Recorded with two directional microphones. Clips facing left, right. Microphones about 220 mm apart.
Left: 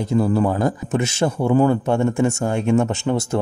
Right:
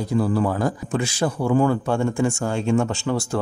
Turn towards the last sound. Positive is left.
turn(degrees=20)  # may be behind; listen again after turning